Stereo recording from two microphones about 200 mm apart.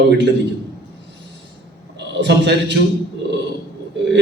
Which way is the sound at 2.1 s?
60° right (ahead or behind).